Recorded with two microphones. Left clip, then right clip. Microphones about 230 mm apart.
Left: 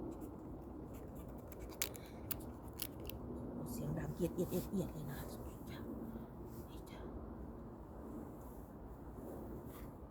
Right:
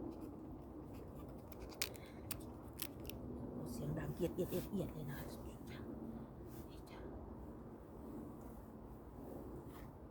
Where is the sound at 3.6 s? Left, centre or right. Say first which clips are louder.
Even; centre.